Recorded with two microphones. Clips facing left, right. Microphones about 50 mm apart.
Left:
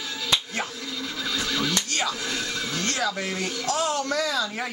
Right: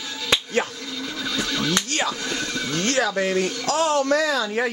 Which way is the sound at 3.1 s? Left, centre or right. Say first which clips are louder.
Right 8 dB; right.